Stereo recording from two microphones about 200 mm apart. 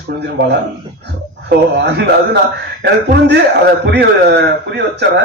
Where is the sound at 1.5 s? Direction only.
60° right (ahead or behind).